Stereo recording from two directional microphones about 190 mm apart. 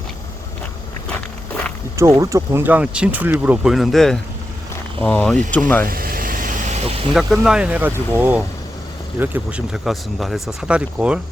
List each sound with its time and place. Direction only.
2.0 s speech: 15° right (ahead or behind); by 5.9 s 10° left (ahead or behind)
5.9 s vehicle: 50° right (ahead or behind)
7.1 s speech: centre (ahead or behind)